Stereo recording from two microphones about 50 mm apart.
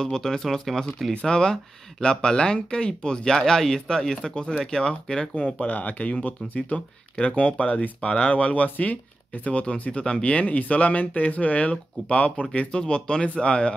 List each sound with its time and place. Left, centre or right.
0.0 s speech: centre
5.3 s speech: left